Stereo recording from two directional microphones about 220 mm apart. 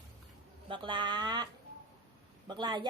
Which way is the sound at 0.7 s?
20° right (ahead or behind).